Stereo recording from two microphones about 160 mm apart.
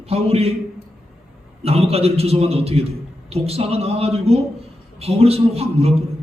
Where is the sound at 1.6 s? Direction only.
40° right (ahead or behind).